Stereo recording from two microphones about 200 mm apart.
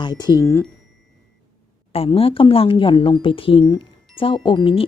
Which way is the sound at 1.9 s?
30° left (ahead or behind).